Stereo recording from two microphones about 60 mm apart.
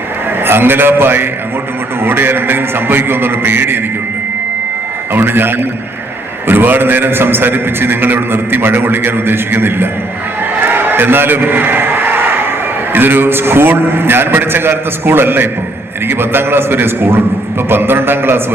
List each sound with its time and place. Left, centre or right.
0.4 s a man's voice: right
5.1 s a man's voice: right
10.6 s a sound: right
12.9 s a man's voice: right